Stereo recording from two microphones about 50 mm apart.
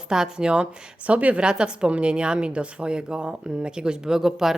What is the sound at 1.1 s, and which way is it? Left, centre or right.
A woman's voice, right.